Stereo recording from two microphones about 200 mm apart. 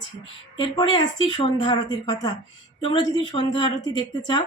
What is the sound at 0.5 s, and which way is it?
Speech, 25° left (ahead or behind).